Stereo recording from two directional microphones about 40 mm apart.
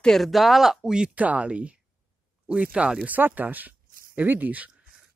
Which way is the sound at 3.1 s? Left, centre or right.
Right.